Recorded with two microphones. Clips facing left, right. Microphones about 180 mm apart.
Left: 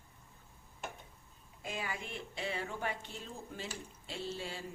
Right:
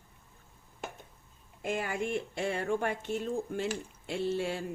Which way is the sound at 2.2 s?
50° right (ahead or behind).